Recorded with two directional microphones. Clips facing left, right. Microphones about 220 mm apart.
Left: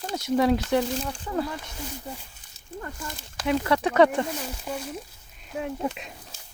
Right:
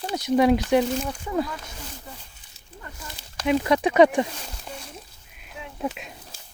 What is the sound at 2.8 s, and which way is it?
Speech, 50° left (ahead or behind).